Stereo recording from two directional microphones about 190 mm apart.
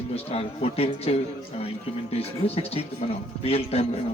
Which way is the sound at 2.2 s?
30° left (ahead or behind).